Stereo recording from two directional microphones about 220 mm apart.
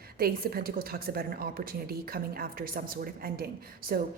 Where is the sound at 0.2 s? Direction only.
45° right (ahead or behind).